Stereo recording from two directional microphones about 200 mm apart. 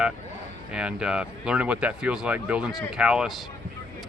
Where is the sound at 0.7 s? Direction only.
5° right (ahead or behind).